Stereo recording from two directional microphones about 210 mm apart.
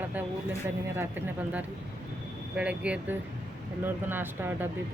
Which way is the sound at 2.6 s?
5° right (ahead or behind).